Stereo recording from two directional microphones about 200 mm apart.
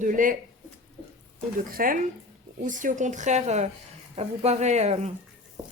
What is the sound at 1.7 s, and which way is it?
A woman's voice, 45° right (ahead or behind).